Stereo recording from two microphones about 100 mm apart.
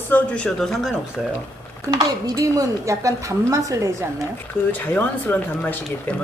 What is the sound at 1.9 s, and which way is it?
A woman's voice, 35° right (ahead or behind).